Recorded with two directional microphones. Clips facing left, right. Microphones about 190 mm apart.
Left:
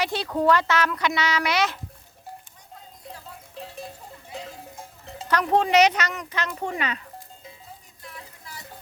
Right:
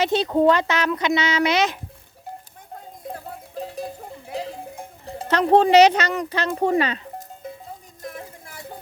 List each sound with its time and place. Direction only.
0.0 s speech: 20° right (ahead or behind)
3.0 s sheep: 50° right (ahead or behind)
5.3 s speech: 30° right (ahead or behind)
7.4 s music: 55° right (ahead or behind)
8.0 s a sound: 50° right (ahead or behind)